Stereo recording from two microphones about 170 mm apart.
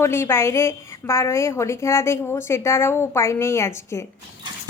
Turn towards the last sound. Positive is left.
turn(degrees=15)  # may be behind; listen again after turning